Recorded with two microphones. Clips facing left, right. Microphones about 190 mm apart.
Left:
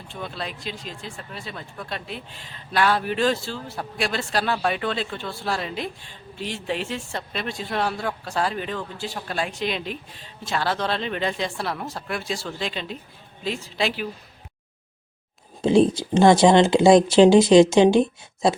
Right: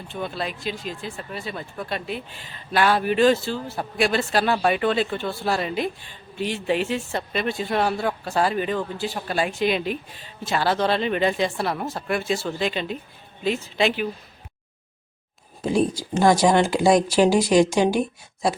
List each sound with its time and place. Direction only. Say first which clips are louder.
0.1 s speech: right 4 dB; 5° right (ahead or behind)
15.6 s speech: left 4 dB; 25° left (ahead or behind)